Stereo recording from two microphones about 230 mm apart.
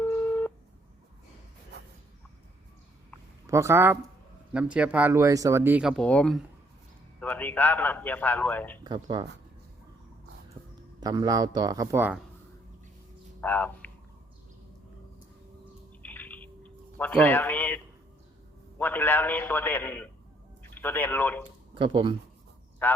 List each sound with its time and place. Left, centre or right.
0.0 s telephone dialing: centre
3.4 s speech: centre
6.0 s a man's voice: centre
8.8 s speech: centre
11.0 s speech: centre
13.4 s a sound: centre
16.0 s drip: centre
18.8 s a man's voice: centre
21.8 s speech: right
22.8 s a man's voice: centre